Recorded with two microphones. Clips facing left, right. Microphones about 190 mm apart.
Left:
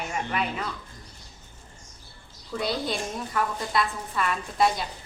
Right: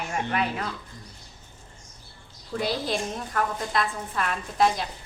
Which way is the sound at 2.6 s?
Centre (ahead or behind).